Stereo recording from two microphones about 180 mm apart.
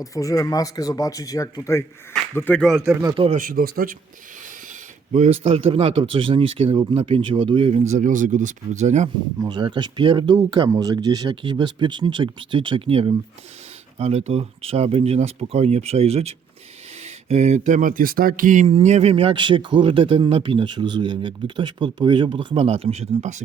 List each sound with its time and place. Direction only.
0.0 s speech: 20° left (ahead or behind)
2.8 s speech: 15° right (ahead or behind)
3.2 s speech: 50° right (ahead or behind)
5.1 s speech: 35° right (ahead or behind)
9.4 s speech: 25° right (ahead or behind)